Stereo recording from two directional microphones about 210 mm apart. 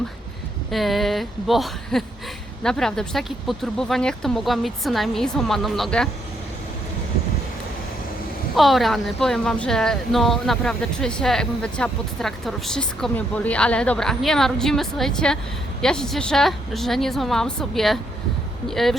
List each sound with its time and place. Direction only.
0.7 s speech: centre (ahead or behind)
8.5 s speech: centre (ahead or behind)